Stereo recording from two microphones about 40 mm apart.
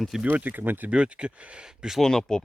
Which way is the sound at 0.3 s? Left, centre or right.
Right.